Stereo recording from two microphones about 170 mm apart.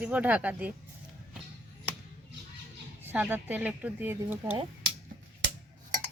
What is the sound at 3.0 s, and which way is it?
Speech, 10° right (ahead or behind).